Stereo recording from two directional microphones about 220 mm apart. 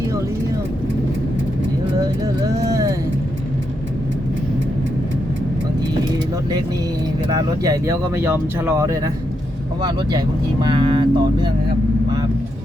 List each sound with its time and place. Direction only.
2.2 s music: 15° right (ahead or behind)
7.3 s speech: 15° right (ahead or behind)